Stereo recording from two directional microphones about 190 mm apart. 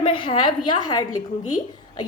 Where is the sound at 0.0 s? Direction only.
25° left (ahead or behind).